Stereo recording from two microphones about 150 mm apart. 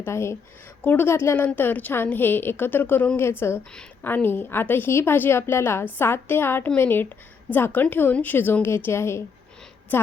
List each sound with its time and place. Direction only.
0.0 s a woman's voice: 20° left (ahead or behind)